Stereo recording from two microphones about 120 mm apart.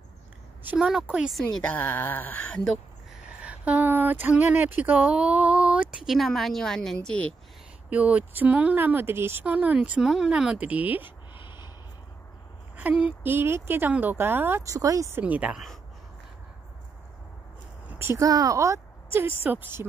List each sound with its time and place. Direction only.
0.7 s a woman's voice: 5° right (ahead or behind)
1.4 s speech: 10° left (ahead or behind)
3.4 s speech: 10° right (ahead or behind); by 7.3 s 10° left (ahead or behind)
7.9 s speech: 10° right (ahead or behind)
11.3 s snort: 40° left (ahead or behind)
12.7 s a sound: 10° right (ahead or behind)
13.2 s speech: 20° right (ahead or behind)
17.8 s a woman's voice: 20° right (ahead or behind)